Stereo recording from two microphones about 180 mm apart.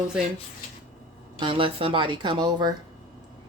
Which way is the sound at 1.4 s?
25° right (ahead or behind).